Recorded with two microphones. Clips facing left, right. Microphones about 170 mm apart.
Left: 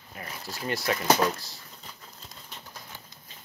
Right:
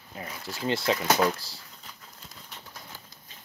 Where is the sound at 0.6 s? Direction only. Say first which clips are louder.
Right 3 dB; 25° right (ahead or behind).